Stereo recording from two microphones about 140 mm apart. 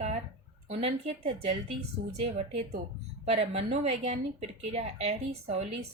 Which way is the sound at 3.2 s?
50° right (ahead or behind).